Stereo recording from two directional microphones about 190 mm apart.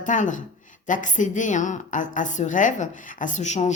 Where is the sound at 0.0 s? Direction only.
40° left (ahead or behind).